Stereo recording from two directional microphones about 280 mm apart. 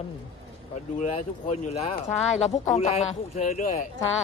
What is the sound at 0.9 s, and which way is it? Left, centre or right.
Speech, left.